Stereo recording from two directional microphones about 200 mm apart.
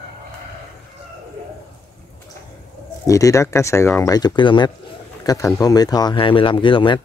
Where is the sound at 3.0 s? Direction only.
15° left (ahead or behind).